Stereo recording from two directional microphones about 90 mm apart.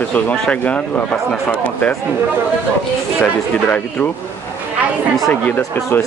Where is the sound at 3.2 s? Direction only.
20° left (ahead or behind).